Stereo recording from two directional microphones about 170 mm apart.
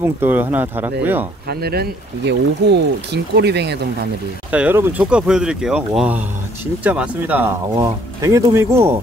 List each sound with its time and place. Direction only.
0.0 s speech: 10° right (ahead or behind)
1.5 s speech: 65° right (ahead or behind)
4.5 s speech: 10° right (ahead or behind)